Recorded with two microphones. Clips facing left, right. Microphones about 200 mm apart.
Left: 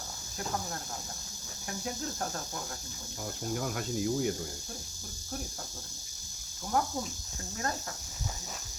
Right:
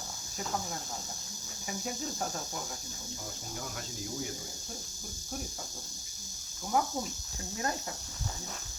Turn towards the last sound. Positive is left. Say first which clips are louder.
# even
turn(degrees=-5)  # may be behind; listen again after turning